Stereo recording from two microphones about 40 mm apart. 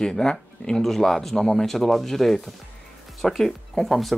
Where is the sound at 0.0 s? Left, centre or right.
Centre.